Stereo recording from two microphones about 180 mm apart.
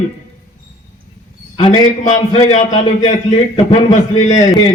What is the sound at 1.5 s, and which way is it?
Speech, 25° left (ahead or behind).